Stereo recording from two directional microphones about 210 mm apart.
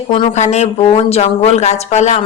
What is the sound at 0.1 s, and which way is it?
Speech, 30° left (ahead or behind).